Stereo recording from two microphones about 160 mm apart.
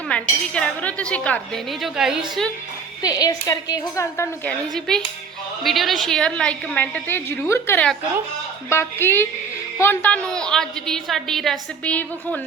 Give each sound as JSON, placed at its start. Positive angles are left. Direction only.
{"t": 0.1, "sound": "a woman's voice", "side_deg": 5}
{"t": 3.0, "sound": "a woman's voice", "side_deg": 25}
{"t": 4.4, "sound": "a woman's voice", "side_deg": 5}